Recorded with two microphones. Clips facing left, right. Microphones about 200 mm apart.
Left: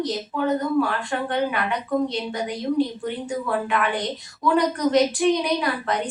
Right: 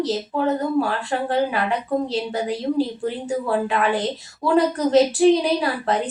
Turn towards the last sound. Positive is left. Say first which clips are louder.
# right 3 dB
turn(degrees=-30)  # may be behind; listen again after turning